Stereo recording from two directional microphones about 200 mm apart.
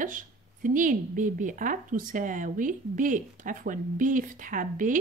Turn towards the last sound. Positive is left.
turn(degrees=-40)  # may be behind; listen again after turning